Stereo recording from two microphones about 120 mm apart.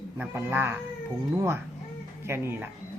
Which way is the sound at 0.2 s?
15° right (ahead or behind).